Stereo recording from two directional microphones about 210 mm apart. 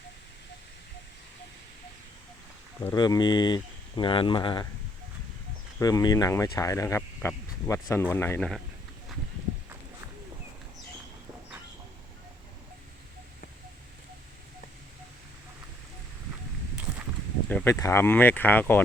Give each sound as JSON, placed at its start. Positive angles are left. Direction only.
{"t": 2.8, "sound": "speech", "side_deg": 20}
{"t": 5.8, "sound": "speech", "side_deg": 15}
{"t": 17.5, "sound": "speech", "side_deg": 10}